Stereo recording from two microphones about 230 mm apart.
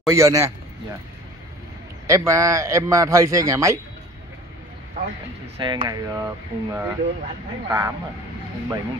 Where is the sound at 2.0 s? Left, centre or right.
Centre.